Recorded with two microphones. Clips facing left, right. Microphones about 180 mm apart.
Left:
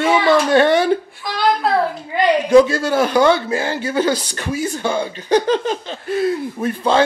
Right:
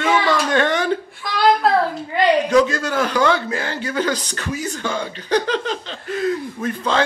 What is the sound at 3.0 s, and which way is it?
Speech, 10° left (ahead or behind).